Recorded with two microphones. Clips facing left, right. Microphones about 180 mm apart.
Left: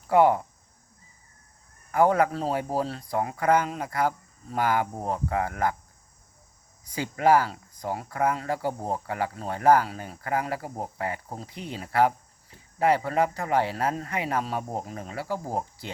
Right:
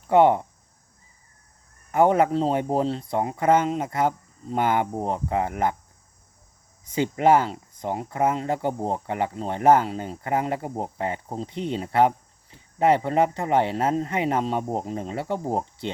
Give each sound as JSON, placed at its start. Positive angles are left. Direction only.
{"t": 0.1, "sound": "speech", "side_deg": -25}
{"t": 1.9, "sound": "speech", "side_deg": -25}
{"t": 6.8, "sound": "speech", "side_deg": -25}